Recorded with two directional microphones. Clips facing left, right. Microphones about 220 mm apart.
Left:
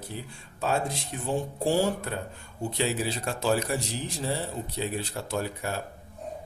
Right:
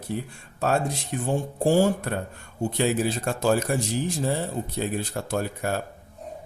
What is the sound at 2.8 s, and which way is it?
Speech, 50° right (ahead or behind).